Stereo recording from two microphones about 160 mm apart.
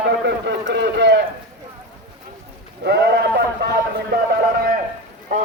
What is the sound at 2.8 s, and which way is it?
Sheep, 85° right.